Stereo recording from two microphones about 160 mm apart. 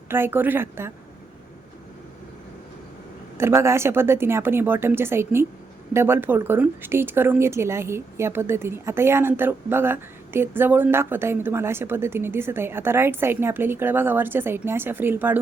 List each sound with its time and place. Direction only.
0.1 s speech: 15° right (ahead or behind)
3.3 s speech: 15° right (ahead or behind)